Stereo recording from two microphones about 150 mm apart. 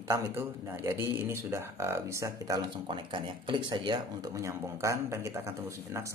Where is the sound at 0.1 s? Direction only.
15° right (ahead or behind).